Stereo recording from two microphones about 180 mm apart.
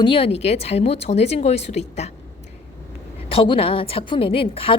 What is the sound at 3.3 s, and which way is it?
A woman's voice, 30° left (ahead or behind).